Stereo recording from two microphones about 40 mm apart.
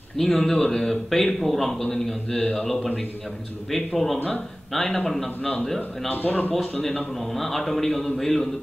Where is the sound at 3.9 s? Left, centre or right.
Centre.